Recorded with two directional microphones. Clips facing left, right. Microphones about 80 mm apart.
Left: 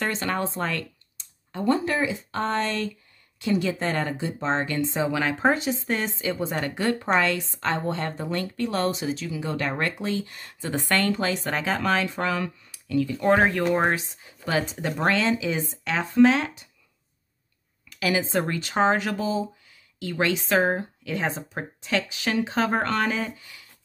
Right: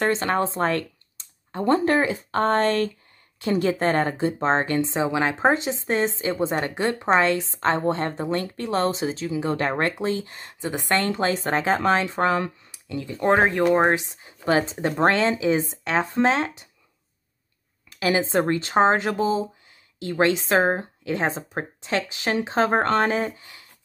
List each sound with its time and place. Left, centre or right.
0.0 s a woman's voice: right
4.8 s a woman's voice: right
10.6 s a woman's voice: centre
17.9 s a woman's voice: right